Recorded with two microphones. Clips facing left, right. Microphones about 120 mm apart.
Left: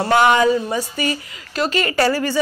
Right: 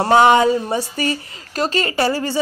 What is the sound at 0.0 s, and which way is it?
A woman's voice, 25° right (ahead or behind).